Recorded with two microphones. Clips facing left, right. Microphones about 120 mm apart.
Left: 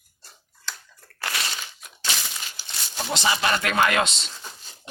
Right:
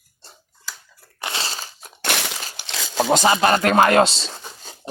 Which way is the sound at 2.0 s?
70° right (ahead or behind).